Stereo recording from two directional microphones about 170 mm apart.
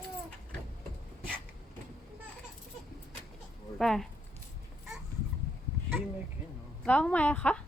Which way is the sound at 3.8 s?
Centre (ahead or behind).